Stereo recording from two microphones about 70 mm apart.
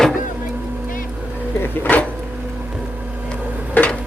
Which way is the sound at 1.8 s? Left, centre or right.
Left.